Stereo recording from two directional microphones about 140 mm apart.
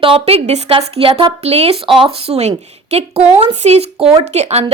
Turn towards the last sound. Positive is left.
turn(degrees=-50)  # may be behind; listen again after turning